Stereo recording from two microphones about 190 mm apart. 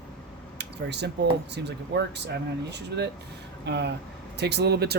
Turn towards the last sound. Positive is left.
turn(degrees=-60)  # may be behind; listen again after turning